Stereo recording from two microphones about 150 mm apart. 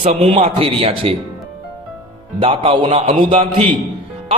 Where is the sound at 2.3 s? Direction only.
35° right (ahead or behind).